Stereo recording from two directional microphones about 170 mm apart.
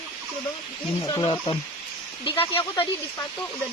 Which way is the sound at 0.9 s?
20° left (ahead or behind).